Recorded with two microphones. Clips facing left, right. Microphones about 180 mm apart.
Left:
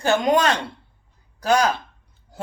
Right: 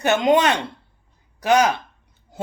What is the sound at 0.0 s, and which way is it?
Speech, 20° right (ahead or behind).